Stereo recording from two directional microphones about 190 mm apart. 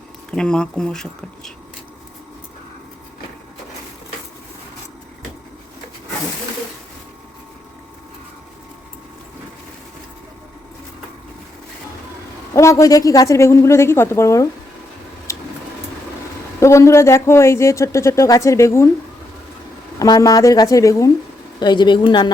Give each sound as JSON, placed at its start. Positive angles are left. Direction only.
{"t": 0.3, "sound": "speech", "side_deg": 5}
{"t": 12.5, "sound": "speech", "side_deg": 15}
{"t": 15.3, "sound": "vehicle", "side_deg": 15}
{"t": 16.6, "sound": "speech", "side_deg": 15}
{"t": 20.0, "sound": "a woman's voice", "side_deg": 20}